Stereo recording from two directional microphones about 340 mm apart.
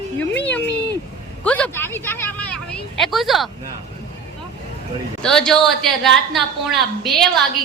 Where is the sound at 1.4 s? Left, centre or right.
Centre.